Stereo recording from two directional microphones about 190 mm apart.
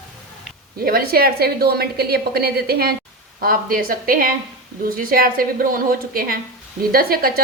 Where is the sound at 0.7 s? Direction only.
50° right (ahead or behind).